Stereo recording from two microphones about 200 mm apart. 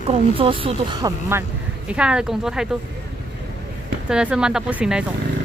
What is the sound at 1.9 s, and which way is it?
Speech, 5° right (ahead or behind).